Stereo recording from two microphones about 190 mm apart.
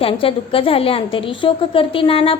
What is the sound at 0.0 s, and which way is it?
A woman's voice, 30° left (ahead or behind).